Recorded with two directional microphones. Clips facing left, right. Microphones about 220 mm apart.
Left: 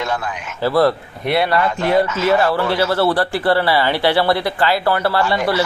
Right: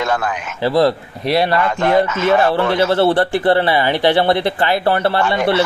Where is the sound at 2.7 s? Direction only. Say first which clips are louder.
Right 3 dB; 25° right (ahead or behind).